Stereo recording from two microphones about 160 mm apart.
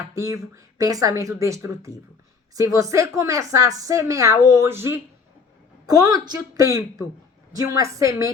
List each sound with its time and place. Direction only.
0.1 s a woman's voice: 20° right (ahead or behind)